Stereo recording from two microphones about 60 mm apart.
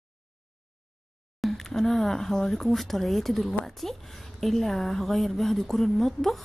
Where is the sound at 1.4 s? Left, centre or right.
Centre.